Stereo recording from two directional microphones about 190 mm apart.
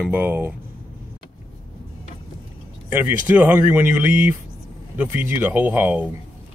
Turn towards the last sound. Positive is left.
turn(degrees=-10)  # may be behind; listen again after turning